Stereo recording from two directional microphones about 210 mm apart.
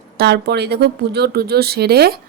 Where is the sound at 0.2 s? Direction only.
50° right (ahead or behind).